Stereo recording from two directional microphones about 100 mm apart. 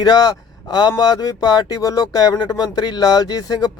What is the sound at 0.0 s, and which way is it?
Speech, 40° left (ahead or behind).